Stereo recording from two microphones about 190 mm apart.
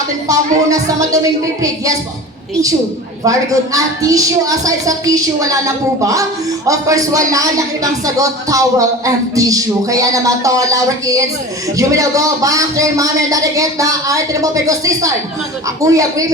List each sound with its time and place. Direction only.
0.3 s speech: 20° right (ahead or behind)
3.2 s speech: 15° right (ahead or behind)